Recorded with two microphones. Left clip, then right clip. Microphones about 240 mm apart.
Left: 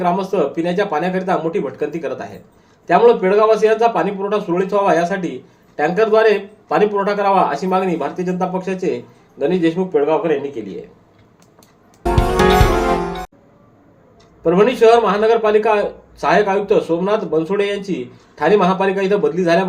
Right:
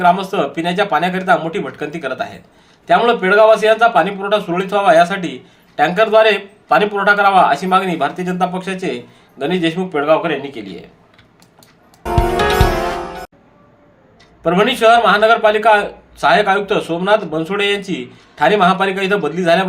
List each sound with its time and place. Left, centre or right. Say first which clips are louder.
0.0 s a man's voice: right 3 dB; right
14.4 s a man's voice: even; right